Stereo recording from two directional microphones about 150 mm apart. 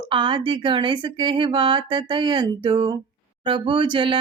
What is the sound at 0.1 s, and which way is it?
Speech, 35° right (ahead or behind).